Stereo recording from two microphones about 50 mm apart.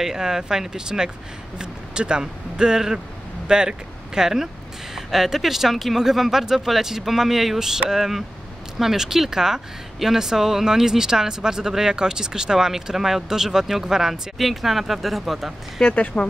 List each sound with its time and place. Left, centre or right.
0.0 s speech: centre
15.8 s speech: left